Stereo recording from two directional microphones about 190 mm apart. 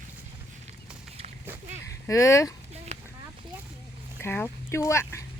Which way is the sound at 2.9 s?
35° right (ahead or behind).